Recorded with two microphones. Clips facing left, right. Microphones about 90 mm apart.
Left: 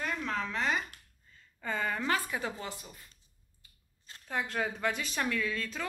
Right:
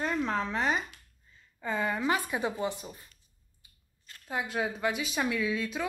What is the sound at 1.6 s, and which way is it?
A woman's voice, 10° right (ahead or behind).